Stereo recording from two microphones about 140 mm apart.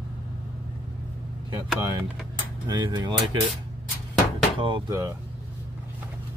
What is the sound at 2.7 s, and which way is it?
Speech, 30° right (ahead or behind).